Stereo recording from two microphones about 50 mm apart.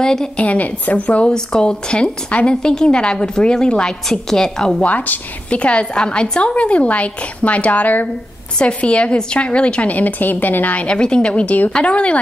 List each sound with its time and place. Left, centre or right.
0.0 s a woman's voice: centre
0.4 s a woman's voice: left
1.3 s a woman's voice: centre
4.8 s a woman's voice: left
8.5 s a woman's voice: left
10.9 s a woman's voice: centre